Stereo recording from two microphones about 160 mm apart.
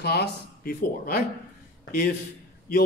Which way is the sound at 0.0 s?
85° left.